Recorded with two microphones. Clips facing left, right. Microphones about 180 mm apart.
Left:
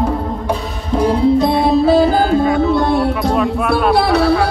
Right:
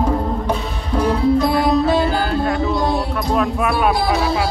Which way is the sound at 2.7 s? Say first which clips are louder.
Left 5 dB; 60° left (ahead or behind).